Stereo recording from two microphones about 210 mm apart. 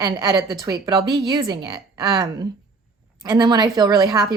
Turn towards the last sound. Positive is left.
turn(degrees=-20)  # may be behind; listen again after turning